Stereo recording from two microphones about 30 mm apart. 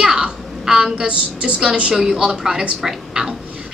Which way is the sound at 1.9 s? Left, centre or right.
Centre.